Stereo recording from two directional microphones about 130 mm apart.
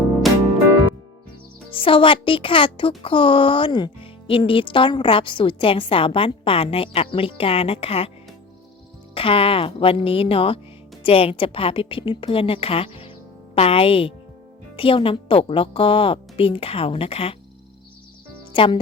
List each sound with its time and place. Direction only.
1.7 s speech: 45° left (ahead or behind)
9.1 s speech: 45° left (ahead or behind)
18.5 s speech: 40° left (ahead or behind)